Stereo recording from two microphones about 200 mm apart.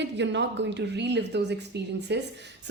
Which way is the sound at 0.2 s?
60° right (ahead or behind).